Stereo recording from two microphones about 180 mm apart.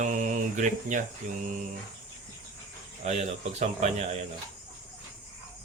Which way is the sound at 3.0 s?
35° right (ahead or behind).